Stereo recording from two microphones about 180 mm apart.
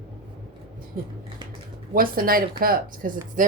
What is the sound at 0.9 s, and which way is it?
Speech, 50° right (ahead or behind).